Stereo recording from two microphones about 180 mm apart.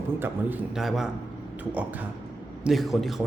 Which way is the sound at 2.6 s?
Centre (ahead or behind).